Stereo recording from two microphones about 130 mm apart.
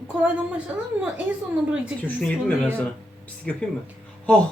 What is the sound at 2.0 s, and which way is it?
Speech, 10° left (ahead or behind).